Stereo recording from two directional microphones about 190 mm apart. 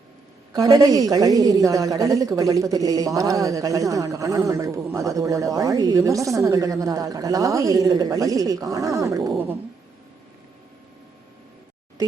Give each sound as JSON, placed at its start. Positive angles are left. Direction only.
{"t": 0.5, "sound": "a woman's voice", "side_deg": -20}